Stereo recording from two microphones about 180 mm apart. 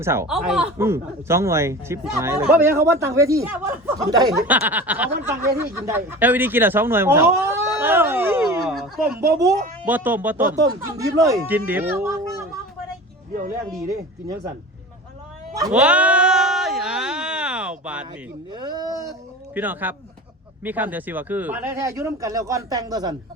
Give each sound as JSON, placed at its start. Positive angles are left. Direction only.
{"t": 0.0, "sound": "speech", "side_deg": -15}
{"t": 0.3, "sound": "speech", "side_deg": -5}
{"t": 0.8, "sound": "speech", "side_deg": -15}
{"t": 9.4, "sound": "speech", "side_deg": -15}
{"t": 13.8, "sound": "speech", "side_deg": -20}
{"t": 15.7, "sound": "a sound", "side_deg": -5}
{"t": 18.5, "sound": "a sound", "side_deg": -25}
{"t": 19.5, "sound": "speech", "side_deg": -10}